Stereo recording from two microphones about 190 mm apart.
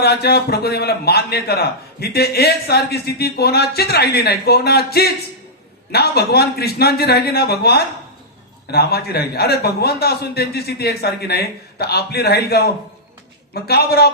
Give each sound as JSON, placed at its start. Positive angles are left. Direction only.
{"t": 0.0, "sound": "a man's voice", "side_deg": 55}